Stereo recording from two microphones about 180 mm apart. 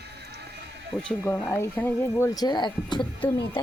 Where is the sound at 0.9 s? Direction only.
5° left (ahead or behind); by 3.0 s 25° left (ahead or behind).